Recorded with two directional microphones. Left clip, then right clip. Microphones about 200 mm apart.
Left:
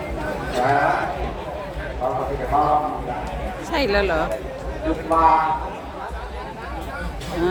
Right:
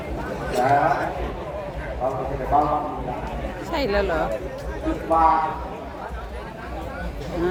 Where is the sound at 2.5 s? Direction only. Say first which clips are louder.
Even; 50° right (ahead or behind).